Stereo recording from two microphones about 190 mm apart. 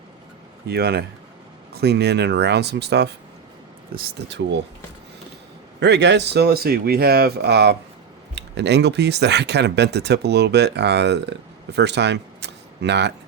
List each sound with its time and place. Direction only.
0.7 s speech: 55° right (ahead or behind)
5.8 s speech: 65° right (ahead or behind)